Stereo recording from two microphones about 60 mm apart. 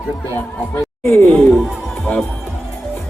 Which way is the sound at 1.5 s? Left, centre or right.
Centre.